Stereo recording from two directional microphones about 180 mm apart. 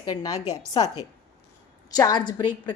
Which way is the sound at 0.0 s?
20° left (ahead or behind).